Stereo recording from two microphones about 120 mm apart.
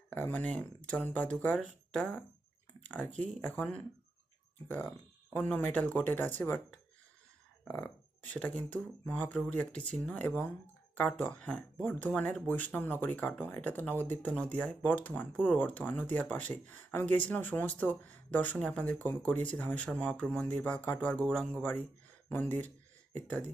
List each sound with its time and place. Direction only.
0.1 s speech: 15° left (ahead or behind)
5.3 s speech: 15° left (ahead or behind)
7.7 s speech: 10° left (ahead or behind)